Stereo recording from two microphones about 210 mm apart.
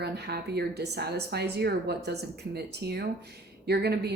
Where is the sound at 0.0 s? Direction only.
50° right (ahead or behind).